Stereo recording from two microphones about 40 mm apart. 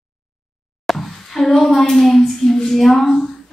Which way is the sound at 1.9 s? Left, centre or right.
Centre.